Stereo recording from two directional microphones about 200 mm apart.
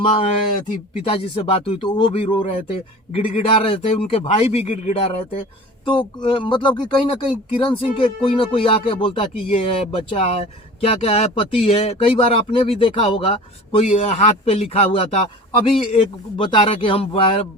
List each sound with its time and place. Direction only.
0.0 s speech: 25° left (ahead or behind)